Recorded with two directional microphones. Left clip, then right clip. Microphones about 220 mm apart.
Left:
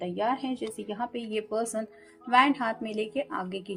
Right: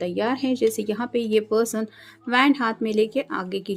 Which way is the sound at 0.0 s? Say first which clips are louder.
Right 5 dB; 45° right (ahead or behind).